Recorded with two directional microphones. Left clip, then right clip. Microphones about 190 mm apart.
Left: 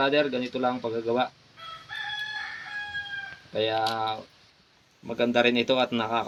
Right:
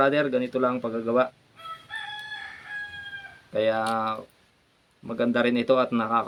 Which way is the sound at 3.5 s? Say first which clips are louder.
Right 2 dB; 30° right (ahead or behind).